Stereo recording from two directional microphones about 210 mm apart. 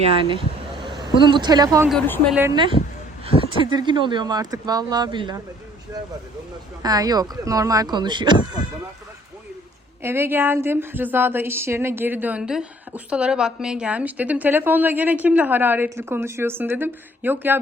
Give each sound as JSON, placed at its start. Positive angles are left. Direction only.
{"t": 0.1, "sound": "speech", "side_deg": -25}
{"t": 1.9, "sound": "speech", "side_deg": 10}
{"t": 2.3, "sound": "speech", "side_deg": -10}
{"t": 3.2, "sound": "speech", "side_deg": -25}
{"t": 6.8, "sound": "speech", "side_deg": -20}
{"t": 10.0, "sound": "speech", "side_deg": -10}